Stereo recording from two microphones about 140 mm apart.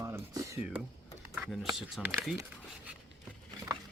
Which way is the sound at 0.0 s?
20° right (ahead or behind).